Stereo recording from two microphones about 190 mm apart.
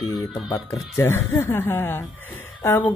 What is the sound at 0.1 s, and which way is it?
Music, 20° left (ahead or behind).